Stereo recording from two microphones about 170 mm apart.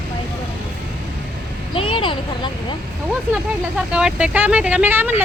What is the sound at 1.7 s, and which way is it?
Speech, 30° left (ahead or behind).